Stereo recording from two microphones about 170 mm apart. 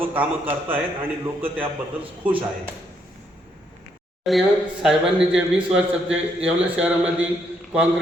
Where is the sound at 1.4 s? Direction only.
30° right (ahead or behind).